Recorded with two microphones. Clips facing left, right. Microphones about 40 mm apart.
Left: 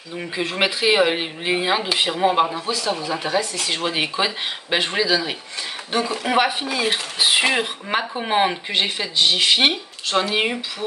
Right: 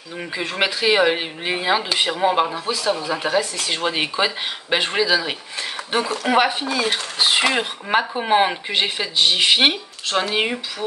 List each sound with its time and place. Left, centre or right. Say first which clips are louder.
0.2 s speech: even; centre
3.1 s speech: right 2 dB; centre
3.6 s speech: right 1 dB; centre
6.2 s speech: right 2 dB; centre
6.6 s speech: even; centre
10.3 s speech: even; centre